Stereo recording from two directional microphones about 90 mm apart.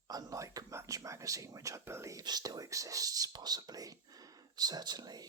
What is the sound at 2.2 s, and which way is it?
Speech, 50° right (ahead or behind).